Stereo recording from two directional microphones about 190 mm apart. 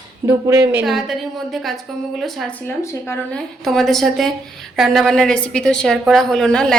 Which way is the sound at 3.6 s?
Centre (ahead or behind).